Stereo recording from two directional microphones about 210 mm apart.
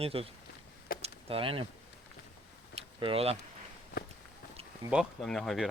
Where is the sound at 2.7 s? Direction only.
25° right (ahead or behind).